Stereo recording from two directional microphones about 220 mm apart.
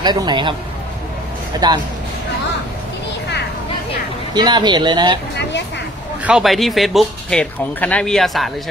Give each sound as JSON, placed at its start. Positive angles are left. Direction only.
{"t": 0.0, "sound": "speech", "side_deg": -20}
{"t": 1.6, "sound": "speech", "side_deg": -20}
{"t": 4.3, "sound": "speech", "side_deg": -20}
{"t": 5.3, "sound": "a sound", "side_deg": 50}
{"t": 6.2, "sound": "speech", "side_deg": 0}